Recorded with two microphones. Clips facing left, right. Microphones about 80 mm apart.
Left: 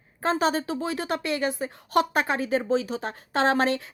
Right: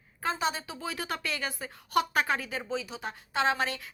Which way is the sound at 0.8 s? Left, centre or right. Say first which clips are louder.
Left 7 dB; left.